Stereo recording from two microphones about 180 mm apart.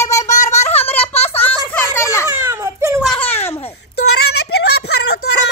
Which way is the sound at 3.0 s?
5° left (ahead or behind).